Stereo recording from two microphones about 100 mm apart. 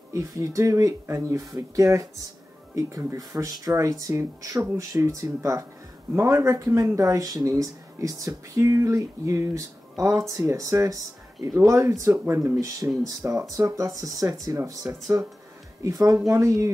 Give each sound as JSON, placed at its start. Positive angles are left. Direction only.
{"t": 0.1, "sound": "speech", "side_deg": -35}
{"t": 14.8, "sound": "speech", "side_deg": -20}
{"t": 15.8, "sound": "speech", "side_deg": -35}